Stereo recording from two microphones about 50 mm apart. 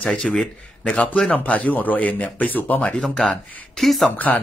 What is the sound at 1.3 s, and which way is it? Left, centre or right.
Speech, left.